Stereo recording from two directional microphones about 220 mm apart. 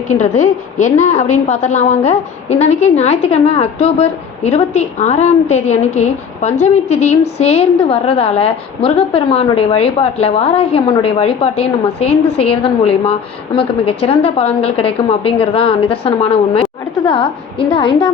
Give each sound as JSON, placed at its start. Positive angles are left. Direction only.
{"t": 0.1, "sound": "a woman's voice", "side_deg": 30}